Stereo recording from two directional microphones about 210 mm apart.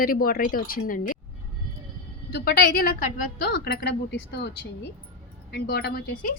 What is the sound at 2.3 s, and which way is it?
A woman's voice, 45° left (ahead or behind).